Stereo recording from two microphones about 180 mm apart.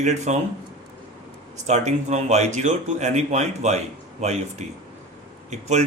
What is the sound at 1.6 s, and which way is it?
Speech, 40° right (ahead or behind).